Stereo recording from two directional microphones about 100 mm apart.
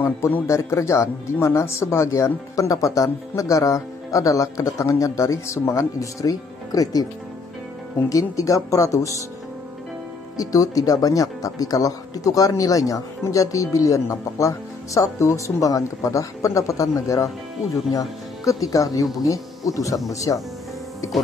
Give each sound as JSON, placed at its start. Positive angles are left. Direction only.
{"t": 0.5, "sound": "speech", "side_deg": 30}
{"t": 8.1, "sound": "speech", "side_deg": 35}
{"t": 10.3, "sound": "speech", "side_deg": 35}